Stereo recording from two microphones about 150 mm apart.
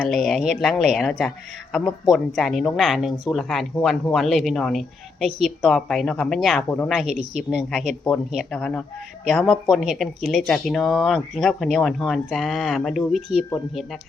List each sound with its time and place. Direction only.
0.0 s speech: centre (ahead or behind)
7.0 s speech: 45° right (ahead or behind)
7.5 s speech: 5° left (ahead or behind)